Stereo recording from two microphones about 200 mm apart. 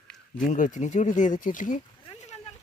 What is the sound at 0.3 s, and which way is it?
Speech, 40° left (ahead or behind).